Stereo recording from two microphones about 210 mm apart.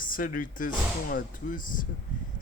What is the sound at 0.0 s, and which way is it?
Speech, 40° left (ahead or behind).